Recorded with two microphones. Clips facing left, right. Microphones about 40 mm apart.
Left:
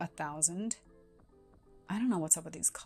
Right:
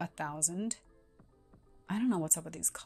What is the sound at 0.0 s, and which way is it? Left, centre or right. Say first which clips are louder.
Speech: even; right.